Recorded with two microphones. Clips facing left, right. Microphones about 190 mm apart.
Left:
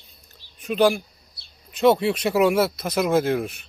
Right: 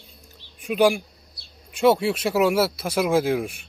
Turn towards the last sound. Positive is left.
turn(degrees=-10)  # may be behind; listen again after turning